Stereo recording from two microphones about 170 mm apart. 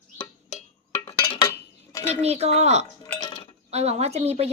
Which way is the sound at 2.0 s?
40° right (ahead or behind).